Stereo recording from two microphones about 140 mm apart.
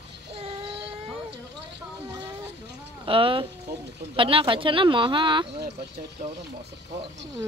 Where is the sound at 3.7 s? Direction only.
90° right.